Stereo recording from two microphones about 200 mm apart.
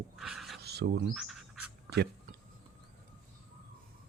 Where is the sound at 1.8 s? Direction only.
55° right (ahead or behind).